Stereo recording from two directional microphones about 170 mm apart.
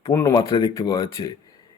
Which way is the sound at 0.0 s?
20° left (ahead or behind).